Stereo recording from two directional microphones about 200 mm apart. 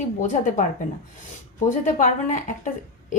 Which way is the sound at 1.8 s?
35° left (ahead or behind).